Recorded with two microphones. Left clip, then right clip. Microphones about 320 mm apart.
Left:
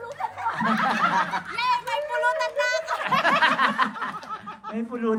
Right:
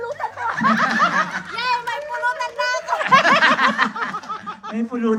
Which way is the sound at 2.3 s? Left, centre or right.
Centre.